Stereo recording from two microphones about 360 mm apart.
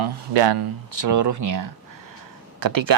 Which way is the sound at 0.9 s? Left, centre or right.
Right.